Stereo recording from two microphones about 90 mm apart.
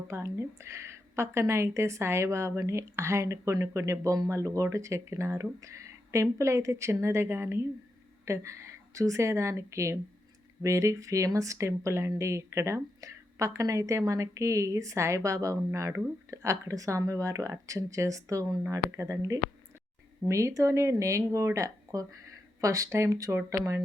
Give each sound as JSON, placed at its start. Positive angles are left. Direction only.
{"t": 0.1, "sound": "a woman's voice", "side_deg": -30}